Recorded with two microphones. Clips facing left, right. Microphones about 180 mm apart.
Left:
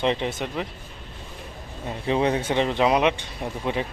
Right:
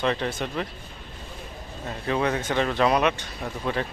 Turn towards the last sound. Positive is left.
turn(degrees=20)  # may be behind; listen again after turning